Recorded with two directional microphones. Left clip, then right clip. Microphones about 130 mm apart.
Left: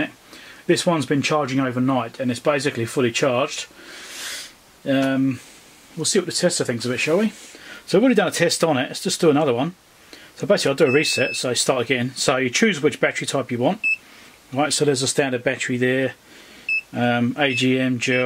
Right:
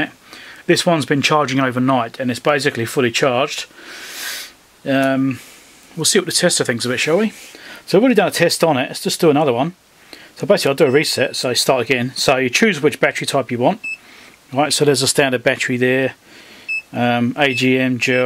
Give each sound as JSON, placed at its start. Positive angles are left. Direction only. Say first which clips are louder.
{"t": 0.7, "sound": "speech", "louder": "right 4 dB", "side_deg": -30}
{"t": 4.8, "sound": "speech", "louder": "right 4 dB", "side_deg": -30}